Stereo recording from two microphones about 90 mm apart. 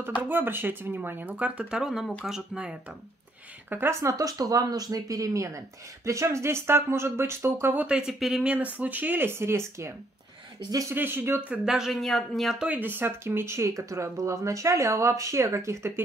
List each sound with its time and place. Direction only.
0.2 s speech: 20° right (ahead or behind)
3.7 s speech: 30° right (ahead or behind)
8.1 s speech: 5° right (ahead or behind)
8.5 s speech: 15° right (ahead or behind); by 11.0 s 40° right (ahead or behind)
11.0 s speech: 25° right (ahead or behind)
11.7 s speech: centre (ahead or behind)
12.6 s speech: 20° right (ahead or behind)